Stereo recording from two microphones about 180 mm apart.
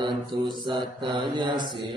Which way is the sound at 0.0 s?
25° right (ahead or behind).